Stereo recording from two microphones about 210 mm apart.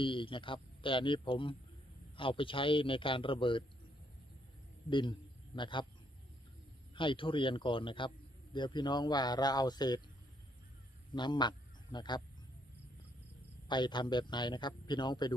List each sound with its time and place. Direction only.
0.0 s a man's voice: 25° left (ahead or behind)
4.9 s a man's voice: 25° left (ahead or behind)
6.9 s a man's voice: 25° left (ahead or behind)
11.1 s speech: 20° left (ahead or behind)
13.7 s a man's voice: 20° left (ahead or behind)